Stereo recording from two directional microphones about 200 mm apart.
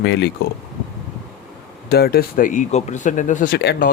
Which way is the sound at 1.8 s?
50° left (ahead or behind).